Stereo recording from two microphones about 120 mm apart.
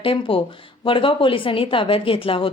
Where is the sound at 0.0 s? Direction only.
50° left (ahead or behind).